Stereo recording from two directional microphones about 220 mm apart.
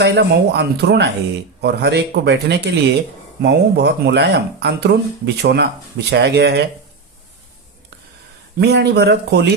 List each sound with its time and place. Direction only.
0.0 s speech: 50° right (ahead or behind)
8.5 s speech: 50° right (ahead or behind)